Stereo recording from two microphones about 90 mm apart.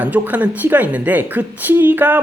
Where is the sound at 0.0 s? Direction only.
15° right (ahead or behind).